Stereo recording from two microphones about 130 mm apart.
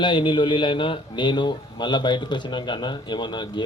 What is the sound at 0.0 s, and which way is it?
A man's voice, 35° left (ahead or behind).